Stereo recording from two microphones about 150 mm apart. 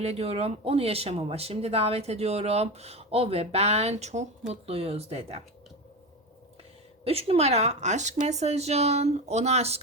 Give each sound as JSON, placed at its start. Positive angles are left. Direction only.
{"t": 0.0, "sound": "speech", "side_deg": -45}
{"t": 7.0, "sound": "speech", "side_deg": -40}